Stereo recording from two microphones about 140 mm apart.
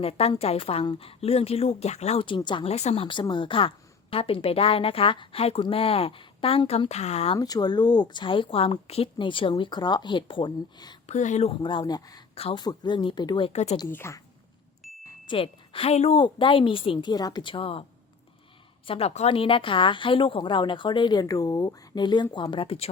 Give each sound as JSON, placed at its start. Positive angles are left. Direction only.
{"t": 0.0, "sound": "a woman's voice", "side_deg": 45}
{"t": 2.6, "sound": "a woman's voice", "side_deg": 50}
{"t": 7.3, "sound": "a woman's voice", "side_deg": 25}
{"t": 11.0, "sound": "speech", "side_deg": 55}
{"t": 11.6, "sound": "speech", "side_deg": 35}
{"t": 12.3, "sound": "a woman's voice", "side_deg": 45}
{"t": 13.5, "sound": "a woman's voice", "side_deg": 50}
{"t": 13.8, "sound": "speech", "side_deg": 20}
{"t": 15.3, "sound": "a woman's voice", "side_deg": 40}
{"t": 18.9, "sound": "a woman's voice", "side_deg": 45}